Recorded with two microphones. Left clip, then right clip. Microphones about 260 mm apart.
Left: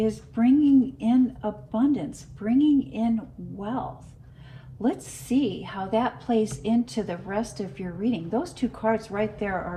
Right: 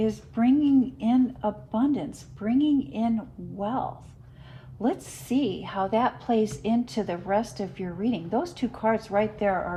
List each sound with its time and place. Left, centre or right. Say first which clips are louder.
0.0 s a woman's voice: left 1 dB; right